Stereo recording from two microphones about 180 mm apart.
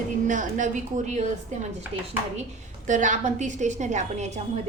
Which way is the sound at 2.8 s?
45° right (ahead or behind).